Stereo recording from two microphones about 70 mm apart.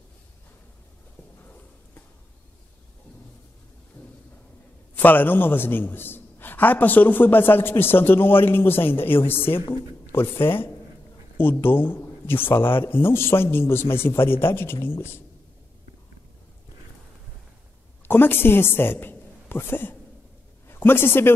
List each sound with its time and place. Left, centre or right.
4.0 s a sound: left
4.9 s a man's voice: left
18.0 s a man's voice: left